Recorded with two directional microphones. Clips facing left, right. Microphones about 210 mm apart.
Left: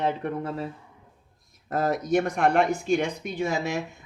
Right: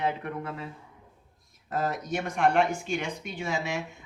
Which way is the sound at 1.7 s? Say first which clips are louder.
Left 6 dB; 45° left (ahead or behind).